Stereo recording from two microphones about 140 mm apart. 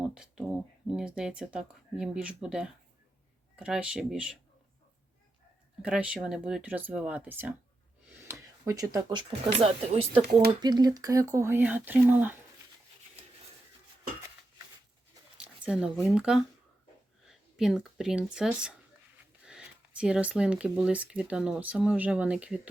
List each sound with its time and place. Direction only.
0.0 s speech: 5° right (ahead or behind)
5.8 s speech: 5° right (ahead or behind); by 9.6 s 30° right (ahead or behind)
9.6 s speech: 50° right (ahead or behind)
10.6 s speech: 30° right (ahead or behind); by 12.4 s 15° right (ahead or behind)
15.6 s speech: 5° right (ahead or behind)